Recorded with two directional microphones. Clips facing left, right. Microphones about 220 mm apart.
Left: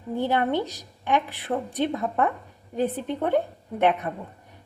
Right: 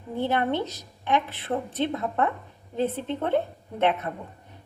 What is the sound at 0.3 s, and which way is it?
A woman's voice, 15° left (ahead or behind).